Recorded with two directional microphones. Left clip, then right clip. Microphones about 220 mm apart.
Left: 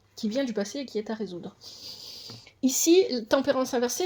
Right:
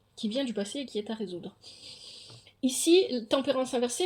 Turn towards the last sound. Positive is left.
turn(degrees=25)  # may be behind; listen again after turning